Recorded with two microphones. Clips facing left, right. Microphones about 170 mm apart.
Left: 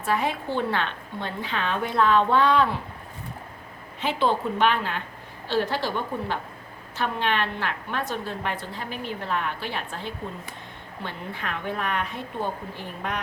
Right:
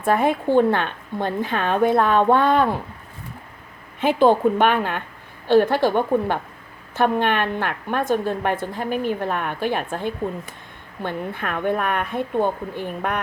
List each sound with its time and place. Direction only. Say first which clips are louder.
0.0 s a woman's voice: right 7 dB; 50° right (ahead or behind)
4.0 s a woman's voice: right 8 dB; 50° right (ahead or behind)